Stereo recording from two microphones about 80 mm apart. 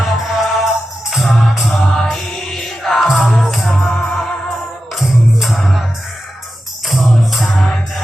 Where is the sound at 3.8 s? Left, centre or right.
Centre.